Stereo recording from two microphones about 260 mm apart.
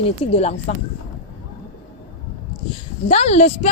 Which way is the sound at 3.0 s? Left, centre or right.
Left.